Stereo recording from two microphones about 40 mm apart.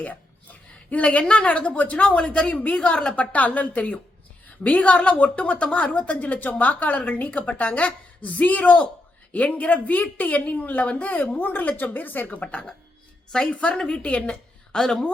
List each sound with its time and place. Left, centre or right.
0.9 s a woman's voice: left
2.8 s a woman's voice: left
3.2 s a woman's voice: left
6.1 s a woman's voice: left
12.3 s a woman's voice: left
13.3 s a woman's voice: centre
14.0 s a woman's voice: left
14.7 s a woman's voice: left